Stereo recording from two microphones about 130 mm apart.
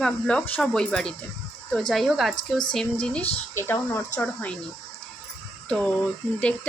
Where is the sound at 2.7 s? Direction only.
5° left (ahead or behind).